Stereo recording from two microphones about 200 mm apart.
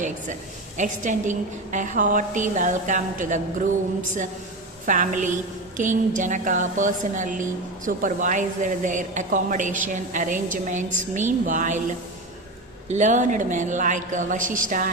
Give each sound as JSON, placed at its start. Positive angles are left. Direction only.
{"t": 0.8, "sound": "a woman's voice", "side_deg": -40}
{"t": 4.9, "sound": "a woman's voice", "side_deg": -40}
{"t": 12.9, "sound": "a woman's voice", "side_deg": -35}